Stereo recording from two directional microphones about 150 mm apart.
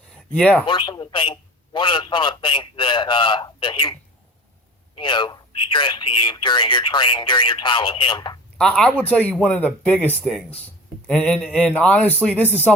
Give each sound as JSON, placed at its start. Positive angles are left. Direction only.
{"t": 0.3, "sound": "speech", "side_deg": 5}
{"t": 0.6, "sound": "speech", "side_deg": 35}
{"t": 4.9, "sound": "speech", "side_deg": 30}
{"t": 8.5, "sound": "speech", "side_deg": 5}
{"t": 11.1, "sound": "speech", "side_deg": 5}